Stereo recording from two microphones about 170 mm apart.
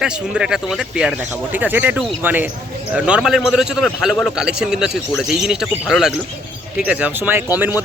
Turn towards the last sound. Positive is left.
turn(degrees=-10)  # may be behind; listen again after turning